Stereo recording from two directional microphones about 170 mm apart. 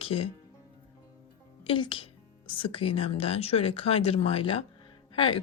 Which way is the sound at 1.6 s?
30° left (ahead or behind).